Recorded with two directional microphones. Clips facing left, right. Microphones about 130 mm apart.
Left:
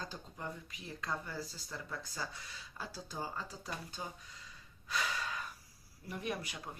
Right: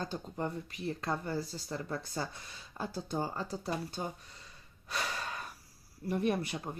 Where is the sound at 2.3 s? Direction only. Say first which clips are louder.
Right 3 dB; 55° right (ahead or behind).